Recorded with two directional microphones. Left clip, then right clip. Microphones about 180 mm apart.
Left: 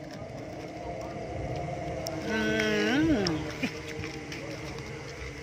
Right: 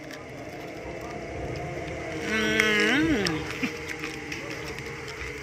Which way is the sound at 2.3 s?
10° left (ahead or behind).